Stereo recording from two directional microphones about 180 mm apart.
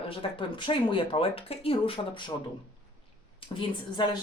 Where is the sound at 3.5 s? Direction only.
25° left (ahead or behind).